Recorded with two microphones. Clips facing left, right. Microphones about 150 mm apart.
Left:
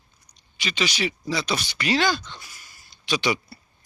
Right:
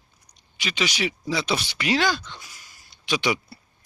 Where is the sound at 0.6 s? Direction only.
10° right (ahead or behind).